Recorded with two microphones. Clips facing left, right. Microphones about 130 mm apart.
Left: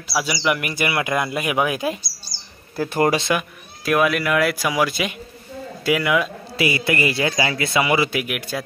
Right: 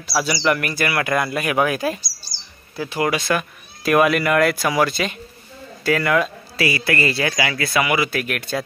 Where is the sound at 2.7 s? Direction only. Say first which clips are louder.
Left 3 dB; 45° left (ahead or behind).